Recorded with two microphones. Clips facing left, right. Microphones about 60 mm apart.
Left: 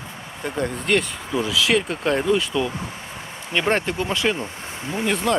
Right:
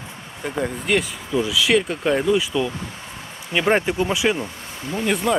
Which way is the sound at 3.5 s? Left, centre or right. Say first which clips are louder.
Right 3 dB; centre.